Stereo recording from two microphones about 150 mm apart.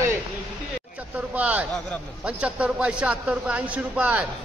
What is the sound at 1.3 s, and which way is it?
A man's voice, 10° right (ahead or behind).